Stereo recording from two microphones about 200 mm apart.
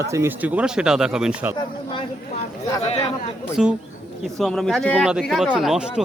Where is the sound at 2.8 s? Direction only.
30° left (ahead or behind).